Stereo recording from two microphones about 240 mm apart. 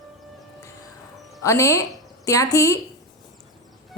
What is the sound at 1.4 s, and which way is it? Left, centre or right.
A woman's voice, centre.